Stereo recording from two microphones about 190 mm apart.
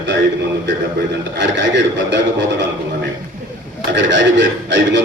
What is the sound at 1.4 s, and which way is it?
Speech, 70° right (ahead or behind).